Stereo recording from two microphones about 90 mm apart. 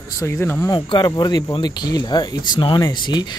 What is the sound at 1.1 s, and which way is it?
Speech, 50° left (ahead or behind).